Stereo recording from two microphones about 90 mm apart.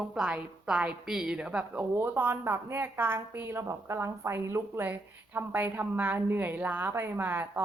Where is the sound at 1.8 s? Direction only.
25° right (ahead or behind).